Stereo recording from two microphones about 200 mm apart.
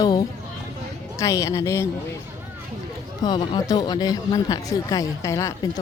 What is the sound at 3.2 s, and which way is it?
Speech, 20° left (ahead or behind).